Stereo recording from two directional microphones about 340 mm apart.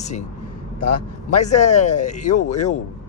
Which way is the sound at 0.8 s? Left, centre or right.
Left.